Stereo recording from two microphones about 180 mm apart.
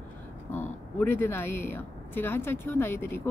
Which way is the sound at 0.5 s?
10° left (ahead or behind).